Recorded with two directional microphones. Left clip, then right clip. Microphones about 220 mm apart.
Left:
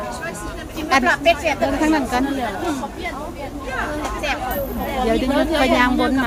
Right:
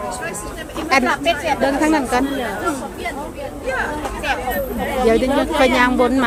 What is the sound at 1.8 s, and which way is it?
Speech, 10° right (ahead or behind).